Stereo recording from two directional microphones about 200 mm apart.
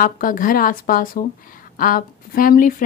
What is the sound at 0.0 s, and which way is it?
A woman's voice, 45° left (ahead or behind).